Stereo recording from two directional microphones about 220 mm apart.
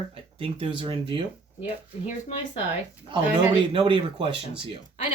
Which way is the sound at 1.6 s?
35° left (ahead or behind).